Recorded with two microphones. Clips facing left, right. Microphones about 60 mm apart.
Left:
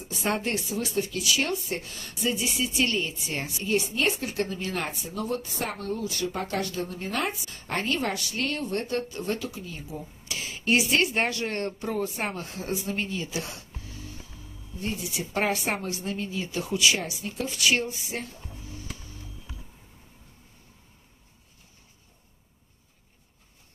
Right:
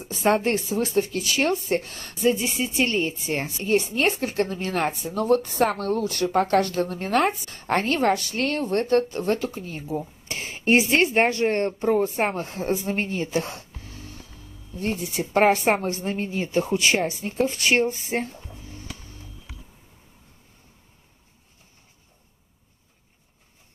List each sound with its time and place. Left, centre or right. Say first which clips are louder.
0.0 s speech: right 7 dB; right
14.8 s speech: right 5 dB; right